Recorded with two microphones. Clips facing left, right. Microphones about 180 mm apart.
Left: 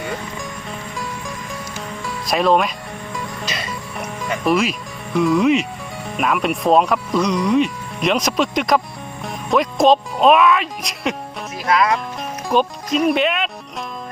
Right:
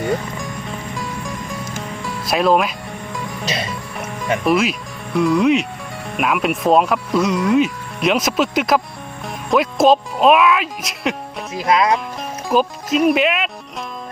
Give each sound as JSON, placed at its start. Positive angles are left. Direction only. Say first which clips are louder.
{"t": 0.9, "sound": "music", "louder": "right 1 dB", "side_deg": 0}
{"t": 4.4, "sound": "speech", "louder": "even", "side_deg": 0}
{"t": 11.5, "sound": "speech", "louder": "right 2 dB", "side_deg": -25}
{"t": 12.5, "sound": "speech", "louder": "right 1 dB", "side_deg": -5}